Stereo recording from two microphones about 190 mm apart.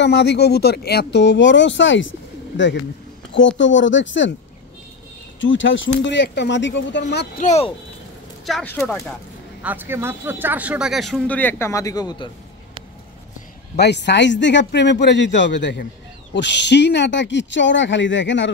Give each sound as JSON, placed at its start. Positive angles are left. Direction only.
{"t": 0.0, "sound": "speech", "side_deg": 60}
{"t": 5.4, "sound": "speech", "side_deg": 80}
{"t": 7.4, "sound": "speech", "side_deg": 35}
{"t": 8.5, "sound": "speech", "side_deg": 5}
{"t": 9.6, "sound": "speech", "side_deg": -10}
{"t": 13.7, "sound": "speech", "side_deg": 65}